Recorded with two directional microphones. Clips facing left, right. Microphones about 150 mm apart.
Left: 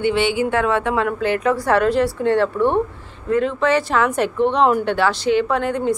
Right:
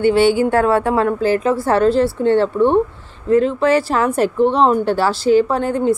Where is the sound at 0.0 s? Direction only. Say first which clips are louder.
Right 5 dB; 40° right (ahead or behind).